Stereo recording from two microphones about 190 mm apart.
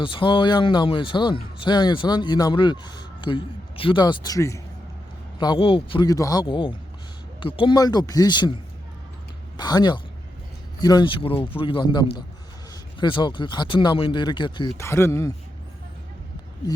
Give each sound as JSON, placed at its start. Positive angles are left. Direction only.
{"t": 0.0, "sound": "speech", "side_deg": 25}
{"t": 9.6, "sound": "speech", "side_deg": 20}
{"t": 14.8, "sound": "speech", "side_deg": 15}